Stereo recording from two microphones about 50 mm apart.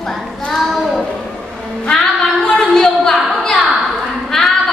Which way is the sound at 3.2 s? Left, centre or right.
Centre.